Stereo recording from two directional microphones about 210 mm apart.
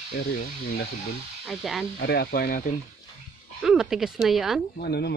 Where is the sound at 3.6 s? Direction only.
Centre (ahead or behind).